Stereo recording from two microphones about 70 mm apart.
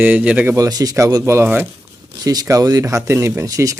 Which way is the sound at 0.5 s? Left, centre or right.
Right.